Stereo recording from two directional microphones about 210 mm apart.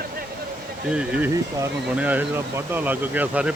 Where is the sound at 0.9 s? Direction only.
5° right (ahead or behind).